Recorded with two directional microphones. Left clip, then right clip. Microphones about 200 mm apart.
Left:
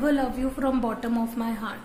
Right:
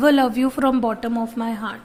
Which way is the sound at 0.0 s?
40° right (ahead or behind).